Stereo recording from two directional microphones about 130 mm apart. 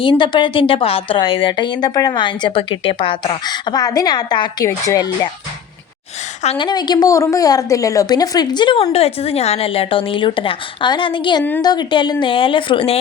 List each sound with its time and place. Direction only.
0.0 s a woman's voice: 40° left (ahead or behind)
6.6 s a woman's voice: 35° left (ahead or behind)
8.8 s a woman's voice: 50° left (ahead or behind)